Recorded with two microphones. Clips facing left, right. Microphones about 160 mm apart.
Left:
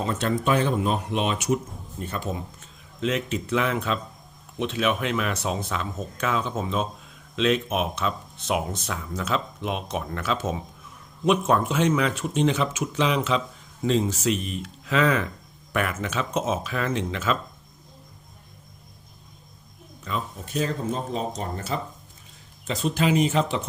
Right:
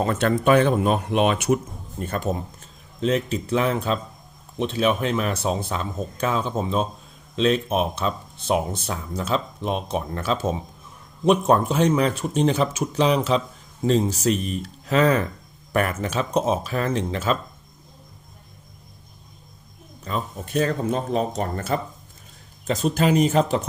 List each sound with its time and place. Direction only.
0.0 s speech: 55° right (ahead or behind); by 17.3 s 35° right (ahead or behind)
20.1 s speech: 40° right (ahead or behind)
20.4 s speech: 60° right (ahead or behind)
22.6 s speech: 45° right (ahead or behind)